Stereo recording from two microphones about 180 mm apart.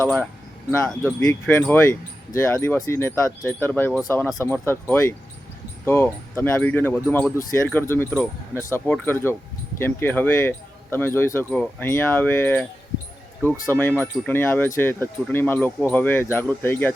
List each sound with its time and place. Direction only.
0.0 s speech: 10° left (ahead or behind)
13.7 s speech: 10° left (ahead or behind)